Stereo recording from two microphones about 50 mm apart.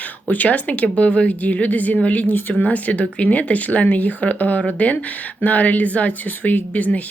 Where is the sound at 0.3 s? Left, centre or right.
Left.